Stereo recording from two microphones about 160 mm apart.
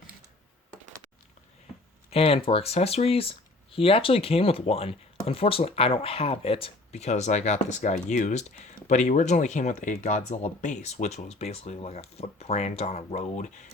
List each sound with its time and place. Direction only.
2.0 s speech: 35° left (ahead or behind)